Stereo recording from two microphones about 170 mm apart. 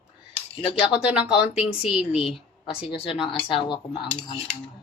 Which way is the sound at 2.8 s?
30° left (ahead or behind).